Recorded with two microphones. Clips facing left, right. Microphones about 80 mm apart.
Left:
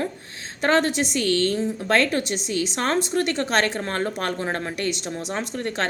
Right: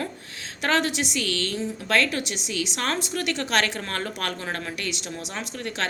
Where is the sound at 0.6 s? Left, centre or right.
Left.